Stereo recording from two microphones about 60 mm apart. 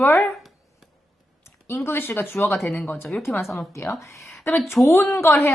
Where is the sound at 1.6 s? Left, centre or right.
Left.